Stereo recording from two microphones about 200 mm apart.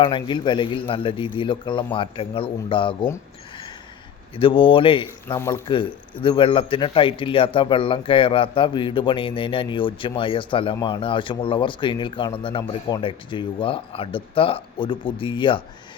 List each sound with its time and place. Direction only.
0.0 s a man's voice: 25° left (ahead or behind)
4.4 s a man's voice: 25° left (ahead or behind)
5.4 s speech: 10° left (ahead or behind)
5.6 s a man's voice: 25° left (ahead or behind)